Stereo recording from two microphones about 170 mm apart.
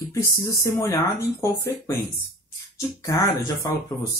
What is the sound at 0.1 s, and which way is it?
Speech, 20° left (ahead or behind).